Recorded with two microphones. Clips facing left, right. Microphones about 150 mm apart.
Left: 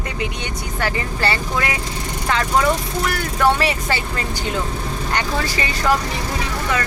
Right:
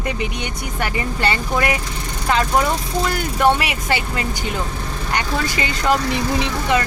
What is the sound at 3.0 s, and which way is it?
Speech, 20° right (ahead or behind).